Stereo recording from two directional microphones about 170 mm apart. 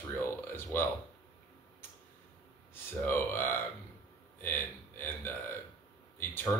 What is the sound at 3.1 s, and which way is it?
A man's voice, 10° left (ahead or behind).